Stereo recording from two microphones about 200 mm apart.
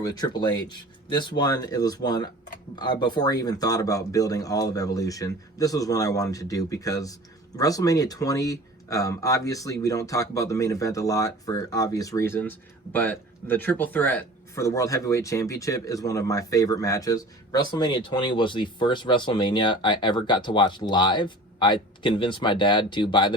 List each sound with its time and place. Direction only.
0.0 s speech: 20° left (ahead or behind)